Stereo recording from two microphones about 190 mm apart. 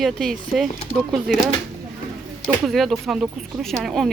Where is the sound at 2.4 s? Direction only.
Centre (ahead or behind).